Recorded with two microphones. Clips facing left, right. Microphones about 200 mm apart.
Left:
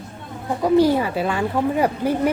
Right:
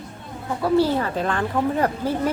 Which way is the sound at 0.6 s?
15° left (ahead or behind).